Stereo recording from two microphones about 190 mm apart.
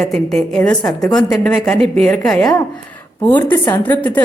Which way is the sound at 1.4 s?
5° left (ahead or behind).